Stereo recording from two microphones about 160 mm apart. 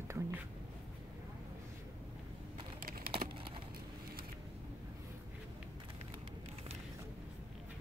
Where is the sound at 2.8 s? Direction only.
65° right (ahead or behind).